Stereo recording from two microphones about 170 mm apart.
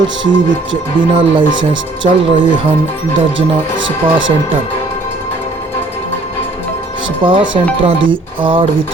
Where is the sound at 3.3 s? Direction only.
90° right.